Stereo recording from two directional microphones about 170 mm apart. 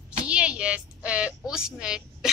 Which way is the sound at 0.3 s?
5° right (ahead or behind).